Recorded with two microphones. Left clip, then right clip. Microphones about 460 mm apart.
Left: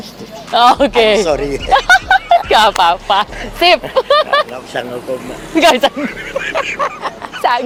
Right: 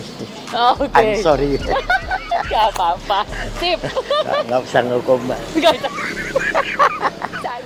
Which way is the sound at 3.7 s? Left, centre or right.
Left.